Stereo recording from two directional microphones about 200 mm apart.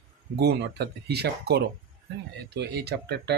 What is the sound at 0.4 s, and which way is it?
Speech, 55° right (ahead or behind).